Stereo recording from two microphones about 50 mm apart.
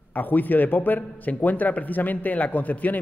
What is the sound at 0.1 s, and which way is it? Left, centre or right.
A man's voice, left.